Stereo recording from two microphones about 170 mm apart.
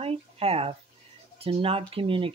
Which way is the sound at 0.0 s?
35° right (ahead or behind).